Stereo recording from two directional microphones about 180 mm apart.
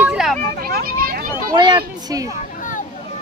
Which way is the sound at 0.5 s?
55° right (ahead or behind).